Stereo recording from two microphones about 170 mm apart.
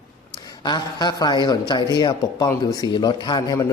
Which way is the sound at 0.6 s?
25° left (ahead or behind).